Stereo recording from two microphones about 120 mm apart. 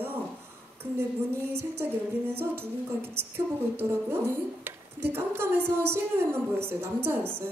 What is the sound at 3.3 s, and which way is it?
A woman's voice, 20° right (ahead or behind).